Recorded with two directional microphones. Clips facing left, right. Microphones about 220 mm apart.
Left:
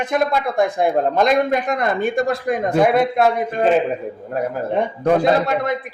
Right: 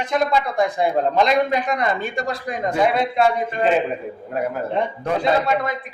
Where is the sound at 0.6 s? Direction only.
50° left (ahead or behind).